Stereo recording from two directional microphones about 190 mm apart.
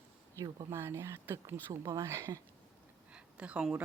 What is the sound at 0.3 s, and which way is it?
A woman's voice, 15° right (ahead or behind).